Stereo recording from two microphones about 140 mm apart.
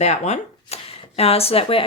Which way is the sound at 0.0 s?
50° left (ahead or behind).